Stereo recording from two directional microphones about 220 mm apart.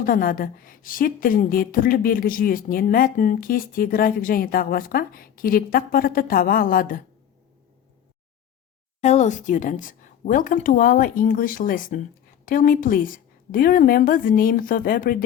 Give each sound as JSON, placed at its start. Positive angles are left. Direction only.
{"t": 0.0, "sound": "a woman's voice", "side_deg": 40}
{"t": 9.0, "sound": "a woman's voice", "side_deg": 30}